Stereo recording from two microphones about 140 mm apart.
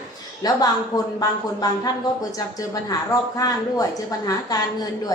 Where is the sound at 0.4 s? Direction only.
25° left (ahead or behind).